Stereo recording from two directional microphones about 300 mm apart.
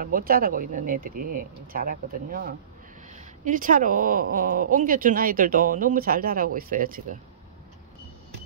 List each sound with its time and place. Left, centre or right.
0.0 s speech: right